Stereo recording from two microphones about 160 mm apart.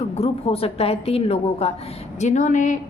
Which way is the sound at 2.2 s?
50° left (ahead or behind).